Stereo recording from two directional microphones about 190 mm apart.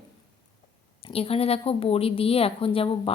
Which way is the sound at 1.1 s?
30° left (ahead or behind).